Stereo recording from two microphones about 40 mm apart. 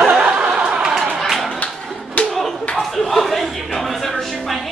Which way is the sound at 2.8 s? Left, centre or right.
Centre.